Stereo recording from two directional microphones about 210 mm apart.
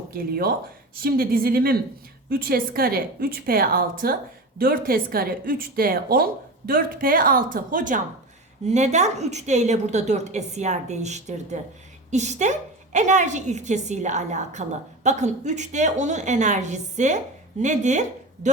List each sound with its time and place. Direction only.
0.1 s a woman's voice: 45° right (ahead or behind)